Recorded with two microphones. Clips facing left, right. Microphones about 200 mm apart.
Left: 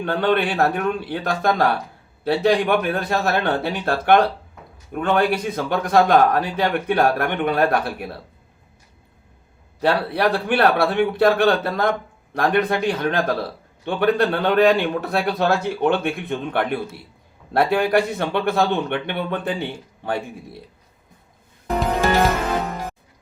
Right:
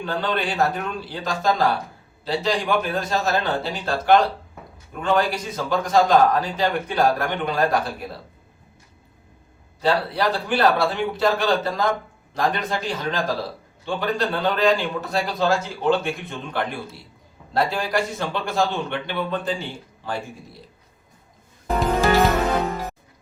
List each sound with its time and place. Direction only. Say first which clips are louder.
0.0 s speech: left 5 dB; 60° left (ahead or behind)
9.8 s speech: left 2 dB; 60° left (ahead or behind)